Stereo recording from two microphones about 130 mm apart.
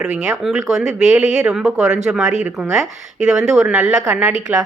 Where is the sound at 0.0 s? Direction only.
5° right (ahead or behind).